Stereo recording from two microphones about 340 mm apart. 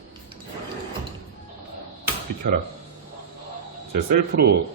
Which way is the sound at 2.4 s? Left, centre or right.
Right.